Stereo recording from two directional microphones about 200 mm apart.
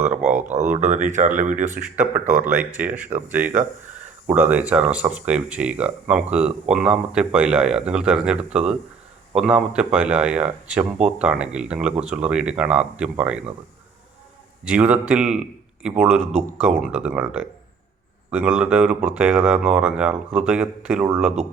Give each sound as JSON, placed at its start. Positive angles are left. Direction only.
{"t": 0.3, "sound": "a sound", "side_deg": -5}
{"t": 0.5, "sound": "speech", "side_deg": -35}
{"t": 2.4, "sound": "speech", "side_deg": -5}
{"t": 4.3, "sound": "speech", "side_deg": -10}
{"t": 14.6, "sound": "speech", "side_deg": -5}